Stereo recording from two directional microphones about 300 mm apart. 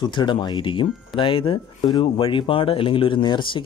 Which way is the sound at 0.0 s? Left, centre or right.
Centre.